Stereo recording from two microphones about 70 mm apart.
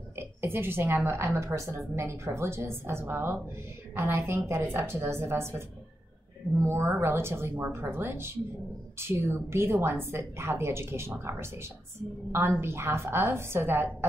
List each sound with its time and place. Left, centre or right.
0.1 s a woman's voice: right